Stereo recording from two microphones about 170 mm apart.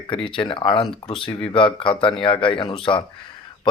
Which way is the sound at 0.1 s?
30° left (ahead or behind).